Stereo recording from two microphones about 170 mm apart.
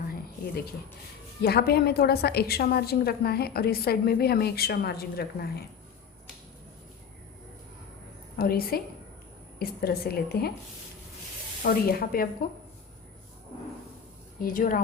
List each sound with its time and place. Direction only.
1.4 s a woman's voice: 65° left (ahead or behind)
8.4 s a woman's voice: 60° left (ahead or behind)
11.6 s a woman's voice: 60° left (ahead or behind)
14.4 s a woman's voice: 55° left (ahead or behind)